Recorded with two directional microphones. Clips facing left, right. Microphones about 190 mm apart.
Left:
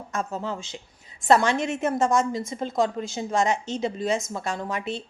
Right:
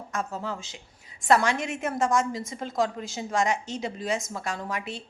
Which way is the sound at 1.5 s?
15° right (ahead or behind).